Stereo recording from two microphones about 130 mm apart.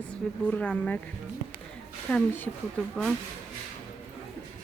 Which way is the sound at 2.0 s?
10° left (ahead or behind).